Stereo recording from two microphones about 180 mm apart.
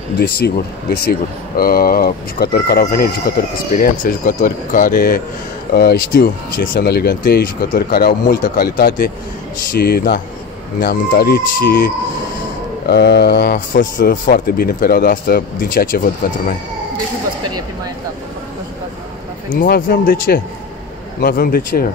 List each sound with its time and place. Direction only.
0.2 s speech: 60° left (ahead or behind)
12.8 s speech: 65° left (ahead or behind)
13.7 s speech: 50° left (ahead or behind)
19.6 s speech: 55° left (ahead or behind)